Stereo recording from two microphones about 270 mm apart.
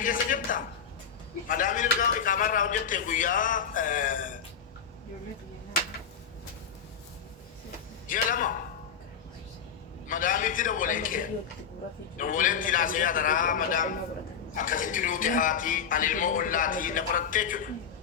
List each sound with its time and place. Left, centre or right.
0.0 s a sound: left
1.5 s speech: left
8.0 s a man's voice: left
10.1 s speech: left